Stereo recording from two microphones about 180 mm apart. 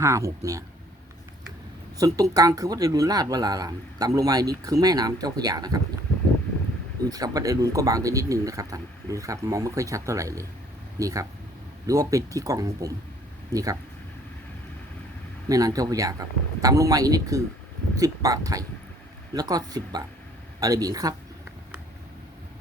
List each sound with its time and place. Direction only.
0.0 s speech: 15° right (ahead or behind)
2.0 s speech: 20° right (ahead or behind)
7.1 s speech: 20° right (ahead or behind)
15.4 s speech: 20° right (ahead or behind)